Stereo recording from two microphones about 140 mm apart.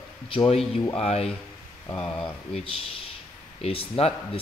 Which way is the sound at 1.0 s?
45° left (ahead or behind).